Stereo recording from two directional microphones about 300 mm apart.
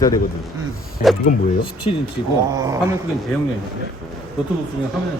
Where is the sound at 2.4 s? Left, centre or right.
Centre.